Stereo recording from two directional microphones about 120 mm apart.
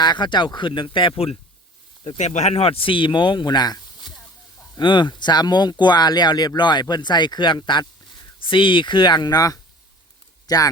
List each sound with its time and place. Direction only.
0.0 s speech: 40° left (ahead or behind)
2.0 s speech: 80° left; by 3.8 s 35° left (ahead or behind)
4.8 s speech: 40° left (ahead or behind)